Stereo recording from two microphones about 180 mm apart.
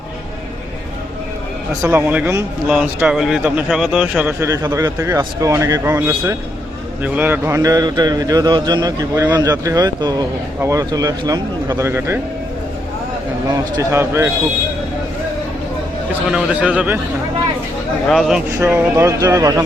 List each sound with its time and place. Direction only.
1.8 s a man's voice: 10° right (ahead or behind)
13.5 s a man's voice: 15° right (ahead or behind)
16.3 s a man's voice: 5° right (ahead or behind)
18.1 s speech: centre (ahead or behind)
18.5 s a man's voice: 10° right (ahead or behind)